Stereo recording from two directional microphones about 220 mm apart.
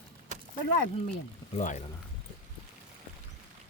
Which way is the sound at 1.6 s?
35° left (ahead or behind).